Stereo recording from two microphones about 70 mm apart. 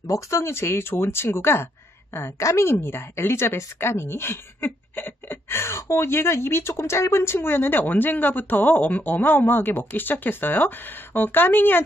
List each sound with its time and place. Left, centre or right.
0.0 s speech: left
0.4 s a woman's voice: left